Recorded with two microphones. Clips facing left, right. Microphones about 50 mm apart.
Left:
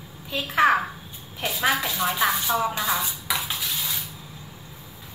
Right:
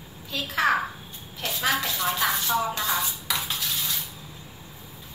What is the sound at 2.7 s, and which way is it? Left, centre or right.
Dishes, centre.